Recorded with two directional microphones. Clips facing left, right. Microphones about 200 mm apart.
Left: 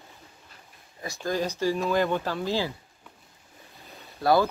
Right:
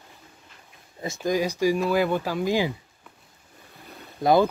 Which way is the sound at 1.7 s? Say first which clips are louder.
Right 2 dB; 5° right (ahead or behind).